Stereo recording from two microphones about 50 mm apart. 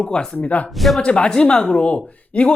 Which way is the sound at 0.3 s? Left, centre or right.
Left.